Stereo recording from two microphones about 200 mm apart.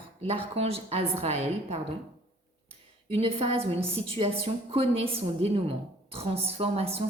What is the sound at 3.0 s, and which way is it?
A woman's voice, 30° right (ahead or behind).